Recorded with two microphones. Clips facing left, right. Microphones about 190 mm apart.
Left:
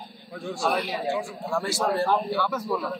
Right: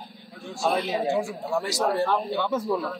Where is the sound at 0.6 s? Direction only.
25° right (ahead or behind).